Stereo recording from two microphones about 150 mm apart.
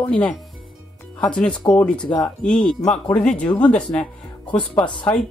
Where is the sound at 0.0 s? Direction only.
5° left (ahead or behind).